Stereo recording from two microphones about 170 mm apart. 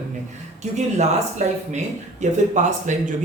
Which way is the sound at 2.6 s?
45° right (ahead or behind).